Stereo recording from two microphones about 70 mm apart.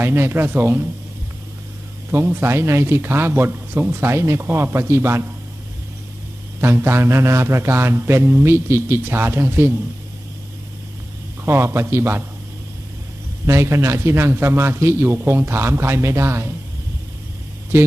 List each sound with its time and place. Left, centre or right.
0.0 s a man's voice: right
2.0 s a man's voice: right
6.6 s a man's voice: right
11.4 s a man's voice: right
13.4 s a man's voice: right